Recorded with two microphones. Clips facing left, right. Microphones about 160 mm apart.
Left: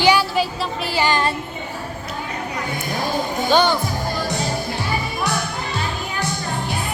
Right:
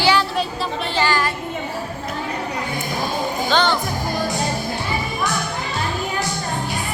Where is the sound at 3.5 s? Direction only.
10° left (ahead or behind).